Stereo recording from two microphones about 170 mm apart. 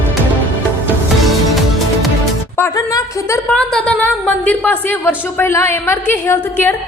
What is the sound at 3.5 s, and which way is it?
A woman's voice, 5° left (ahead or behind).